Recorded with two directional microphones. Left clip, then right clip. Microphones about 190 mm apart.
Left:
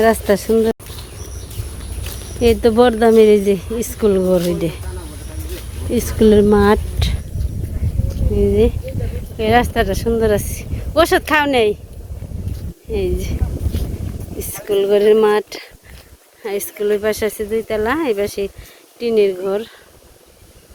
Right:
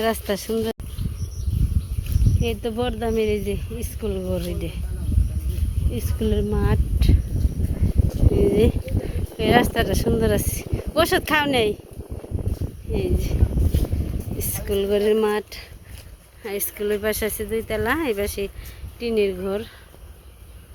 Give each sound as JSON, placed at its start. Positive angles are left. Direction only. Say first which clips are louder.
{"t": 0.0, "sound": "speech", "louder": "left 10 dB", "side_deg": 5}
{"t": 2.4, "sound": "a woman's voice", "louder": "left 14 dB", "side_deg": 20}
{"t": 5.9, "sound": "speech", "louder": "left 14 dB", "side_deg": 25}
{"t": 8.5, "sound": "a sound", "louder": "left 5 dB", "side_deg": -5}
{"t": 9.4, "sound": "speech", "louder": "left 4 dB", "side_deg": 5}
{"t": 12.9, "sound": "a woman's voice", "louder": "left 6 dB", "side_deg": 20}
{"t": 14.7, "sound": "speech", "louder": "left 8 dB", "side_deg": 15}
{"t": 18.9, "sound": "speech", "louder": "left 7 dB", "side_deg": 10}